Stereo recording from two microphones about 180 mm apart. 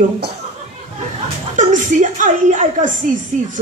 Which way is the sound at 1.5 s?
45° right (ahead or behind).